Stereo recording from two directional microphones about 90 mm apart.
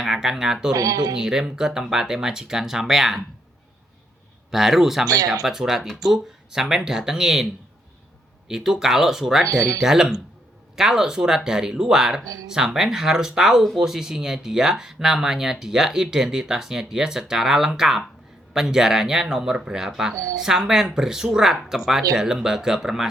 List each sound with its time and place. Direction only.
0.0 s speech: 5° right (ahead or behind)
0.7 s speech: 45° right (ahead or behind)
1.1 s speech: 5° right (ahead or behind)
4.5 s speech: 5° right (ahead or behind)
5.0 s speech: 45° right (ahead or behind)
5.3 s speech: 5° right (ahead or behind)
8.4 s speech: 5° right (ahead or behind)
9.5 s speech: 40° right (ahead or behind)
9.8 s speech: 5° right (ahead or behind)